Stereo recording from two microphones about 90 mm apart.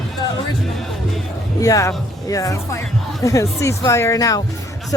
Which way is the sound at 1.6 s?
35° left (ahead or behind).